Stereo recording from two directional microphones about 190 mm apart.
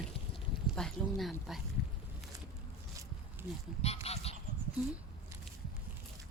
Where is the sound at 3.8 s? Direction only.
35° left (ahead or behind).